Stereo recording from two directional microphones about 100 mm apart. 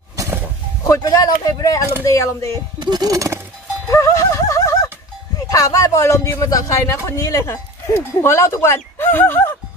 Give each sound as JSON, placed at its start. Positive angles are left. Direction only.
{"t": 0.8, "sound": "speech", "side_deg": 35}
{"t": 2.8, "sound": "speech", "side_deg": -45}
{"t": 3.9, "sound": "a sound", "side_deg": 30}
{"t": 5.5, "sound": "speech", "side_deg": 35}